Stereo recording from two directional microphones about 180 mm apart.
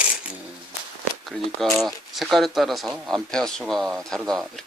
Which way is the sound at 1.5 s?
Centre (ahead or behind).